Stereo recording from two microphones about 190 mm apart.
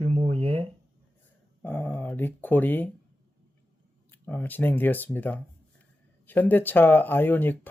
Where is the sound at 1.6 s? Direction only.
10° left (ahead or behind).